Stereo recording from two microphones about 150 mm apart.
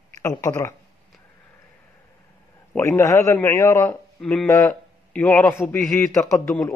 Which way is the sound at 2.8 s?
20° left (ahead or behind).